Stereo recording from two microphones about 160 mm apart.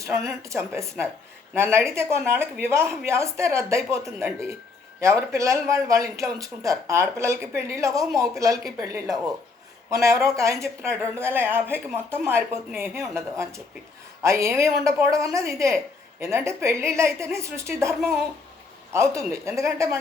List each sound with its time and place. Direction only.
0.0 s a man's voice: 20° right (ahead or behind)